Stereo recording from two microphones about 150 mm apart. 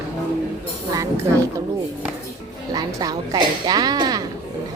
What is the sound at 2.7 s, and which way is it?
Speech, 25° right (ahead or behind).